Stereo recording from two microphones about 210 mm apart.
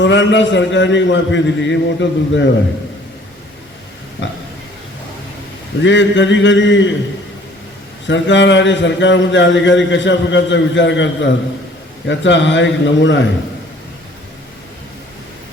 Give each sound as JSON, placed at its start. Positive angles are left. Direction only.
{"t": 0.0, "sound": "a man's voice", "side_deg": 60}
{"t": 5.8, "sound": "a man's voice", "side_deg": 60}
{"t": 8.0, "sound": "a man's voice", "side_deg": 60}